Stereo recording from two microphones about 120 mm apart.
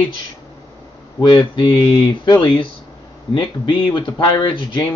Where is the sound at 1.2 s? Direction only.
40° left (ahead or behind).